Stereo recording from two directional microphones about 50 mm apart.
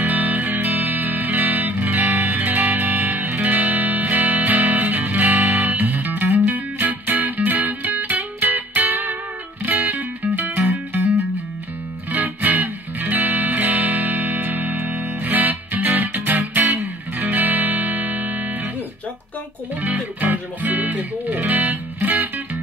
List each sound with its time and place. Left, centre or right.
0.0 s music: right
19.8 s music: right